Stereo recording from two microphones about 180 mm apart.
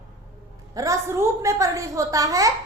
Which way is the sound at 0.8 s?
15° right (ahead or behind).